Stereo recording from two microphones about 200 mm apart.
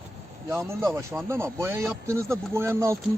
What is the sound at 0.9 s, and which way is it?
Speech, 15° right (ahead or behind).